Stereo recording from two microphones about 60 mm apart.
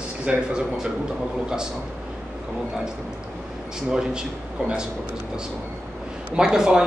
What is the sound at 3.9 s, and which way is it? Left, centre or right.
Speech, centre.